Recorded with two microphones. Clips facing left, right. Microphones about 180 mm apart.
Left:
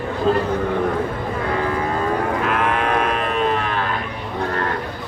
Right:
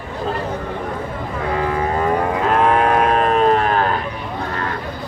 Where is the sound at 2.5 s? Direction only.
35° right (ahead or behind).